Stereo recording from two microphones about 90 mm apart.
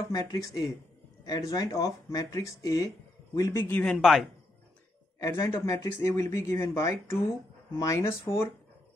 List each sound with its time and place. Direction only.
0.1 s speech: 45° left (ahead or behind)
4.0 s speech: centre (ahead or behind)
5.2 s speech: 30° left (ahead or behind)